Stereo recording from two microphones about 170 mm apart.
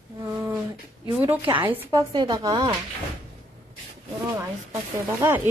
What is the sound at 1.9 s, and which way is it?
Speech, 25° right (ahead or behind).